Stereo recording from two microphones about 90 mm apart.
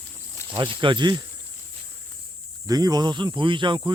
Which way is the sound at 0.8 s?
60° right (ahead or behind).